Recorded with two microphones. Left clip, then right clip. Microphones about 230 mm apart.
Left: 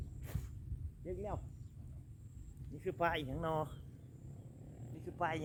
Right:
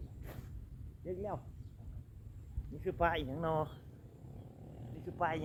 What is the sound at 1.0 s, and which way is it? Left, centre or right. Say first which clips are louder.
Speech: right 3 dB; left.